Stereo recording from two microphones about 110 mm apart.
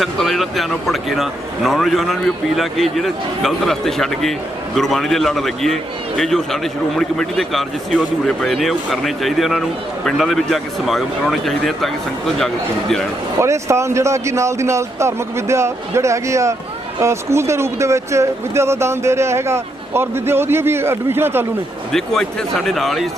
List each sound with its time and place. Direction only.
0.0 s speech: centre (ahead or behind)
13.4 s speech: 25° right (ahead or behind)
21.9 s speech: 5° left (ahead or behind)